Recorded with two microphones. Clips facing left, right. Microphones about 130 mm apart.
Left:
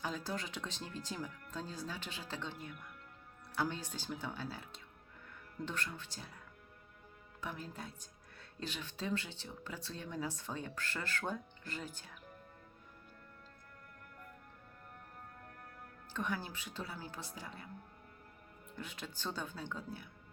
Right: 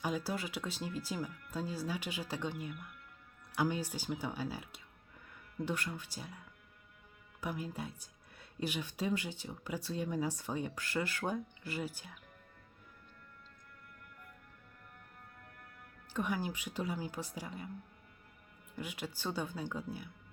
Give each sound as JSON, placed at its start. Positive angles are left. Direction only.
{"t": 0.0, "sound": "speech", "side_deg": -10}
{"t": 7.4, "sound": "speech", "side_deg": -10}
{"t": 15.5, "sound": "music", "side_deg": 40}
{"t": 16.1, "sound": "speech", "side_deg": -10}
{"t": 18.8, "sound": "speech", "side_deg": -10}